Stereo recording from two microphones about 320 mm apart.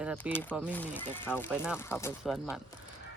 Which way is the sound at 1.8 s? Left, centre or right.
Centre.